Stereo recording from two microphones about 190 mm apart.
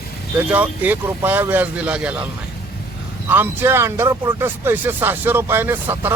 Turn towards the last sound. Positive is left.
turn(degrees=-10)  # may be behind; listen again after turning